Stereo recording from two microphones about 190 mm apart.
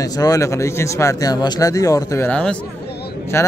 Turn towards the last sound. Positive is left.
turn(degrees=15)  # may be behind; listen again after turning